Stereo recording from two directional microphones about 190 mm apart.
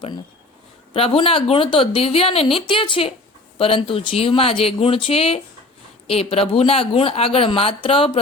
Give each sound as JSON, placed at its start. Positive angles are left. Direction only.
{"t": 0.9, "sound": "speech", "side_deg": 30}